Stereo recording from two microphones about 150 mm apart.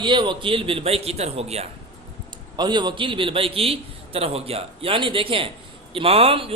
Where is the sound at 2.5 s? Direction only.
30° right (ahead or behind).